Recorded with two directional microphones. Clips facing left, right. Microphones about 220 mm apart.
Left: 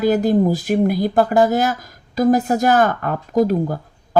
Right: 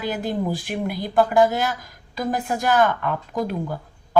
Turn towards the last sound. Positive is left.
turn(degrees=45)  # may be behind; listen again after turning